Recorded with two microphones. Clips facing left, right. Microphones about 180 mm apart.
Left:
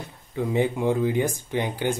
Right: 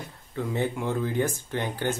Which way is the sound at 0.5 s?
15° left (ahead or behind).